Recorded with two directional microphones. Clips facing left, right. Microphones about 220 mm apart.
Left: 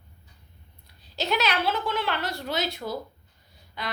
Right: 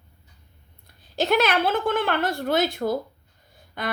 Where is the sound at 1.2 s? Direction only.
50° right (ahead or behind).